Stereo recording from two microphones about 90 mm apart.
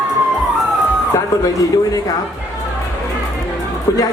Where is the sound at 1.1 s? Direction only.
35° left (ahead or behind).